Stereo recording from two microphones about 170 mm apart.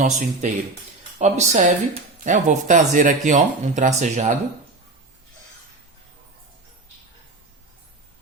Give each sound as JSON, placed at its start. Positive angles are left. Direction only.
{"t": 0.0, "sound": "speech", "side_deg": -50}